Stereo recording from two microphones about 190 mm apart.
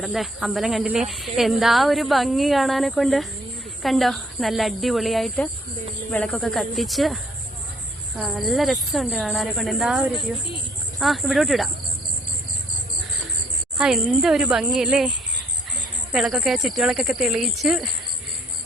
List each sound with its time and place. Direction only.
0.0 s speech: centre (ahead or behind)
13.7 s speech: centre (ahead or behind)
16.1 s speech: 5° right (ahead or behind)